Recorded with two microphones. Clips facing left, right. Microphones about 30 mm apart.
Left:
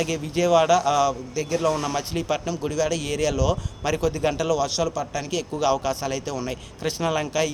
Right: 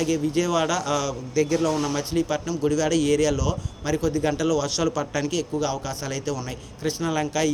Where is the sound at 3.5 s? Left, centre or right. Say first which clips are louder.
Left 2 dB; left.